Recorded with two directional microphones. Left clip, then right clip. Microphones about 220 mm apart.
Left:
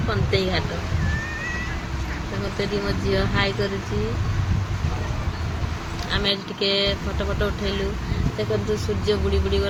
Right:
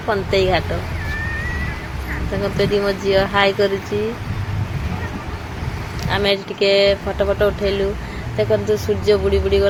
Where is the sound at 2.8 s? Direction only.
5° right (ahead or behind).